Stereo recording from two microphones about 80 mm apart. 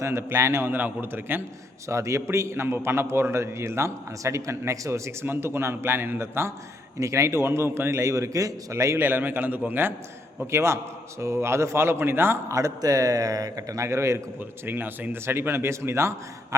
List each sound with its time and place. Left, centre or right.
0.0 s a man's voice: right
1.9 s a man's voice: right
9.0 s a man's voice: right
10.4 s a man's voice: right
14.7 s a man's voice: right